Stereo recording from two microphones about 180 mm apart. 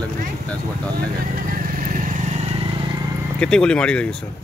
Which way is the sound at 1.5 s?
50° right (ahead or behind).